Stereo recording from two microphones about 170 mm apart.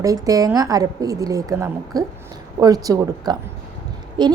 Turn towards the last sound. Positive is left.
turn(degrees=-25)  # may be behind; listen again after turning